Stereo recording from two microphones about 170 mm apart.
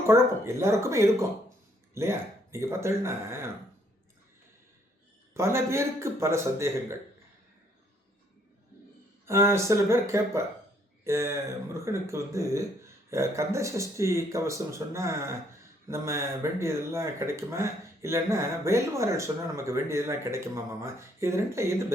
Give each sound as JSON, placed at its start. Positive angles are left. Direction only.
{"t": 0.1, "sound": "speech", "side_deg": -15}
{"t": 5.3, "sound": "speech", "side_deg": -15}
{"t": 9.2, "sound": "speech", "side_deg": -15}